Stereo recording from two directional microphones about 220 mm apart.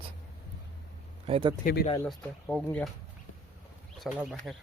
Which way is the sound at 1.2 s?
25° right (ahead or behind).